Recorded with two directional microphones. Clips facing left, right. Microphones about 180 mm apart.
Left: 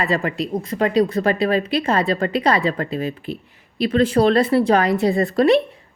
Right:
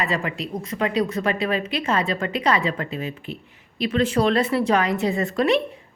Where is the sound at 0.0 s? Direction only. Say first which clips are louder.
Left 4 dB; 35° left (ahead or behind).